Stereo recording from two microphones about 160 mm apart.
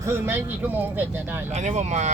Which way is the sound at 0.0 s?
15° right (ahead or behind).